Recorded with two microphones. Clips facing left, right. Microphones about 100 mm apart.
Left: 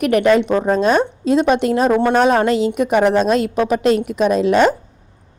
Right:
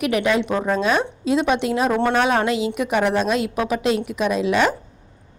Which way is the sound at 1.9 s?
15° left (ahead or behind).